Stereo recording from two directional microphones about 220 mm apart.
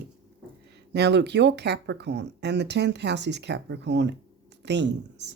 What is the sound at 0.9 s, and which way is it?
Speech, 50° right (ahead or behind).